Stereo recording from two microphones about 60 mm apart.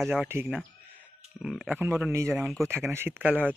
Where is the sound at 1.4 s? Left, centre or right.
Centre.